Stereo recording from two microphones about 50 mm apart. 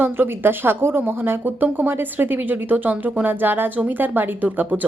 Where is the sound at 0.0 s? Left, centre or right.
Right.